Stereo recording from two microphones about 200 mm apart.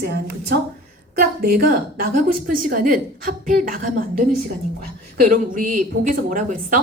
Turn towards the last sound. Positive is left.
turn(degrees=-40)  # may be behind; listen again after turning